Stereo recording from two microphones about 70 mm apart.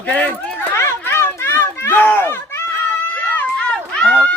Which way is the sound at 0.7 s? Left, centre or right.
Left.